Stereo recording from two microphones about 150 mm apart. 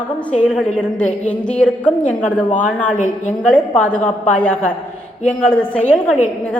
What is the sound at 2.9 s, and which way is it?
Speech, 55° left (ahead or behind).